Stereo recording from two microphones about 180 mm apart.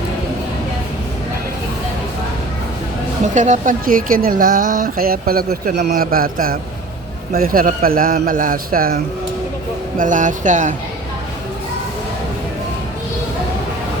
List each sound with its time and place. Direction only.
3.3 s speech: 45° right (ahead or behind)
10.0 s speech: 45° right (ahead or behind)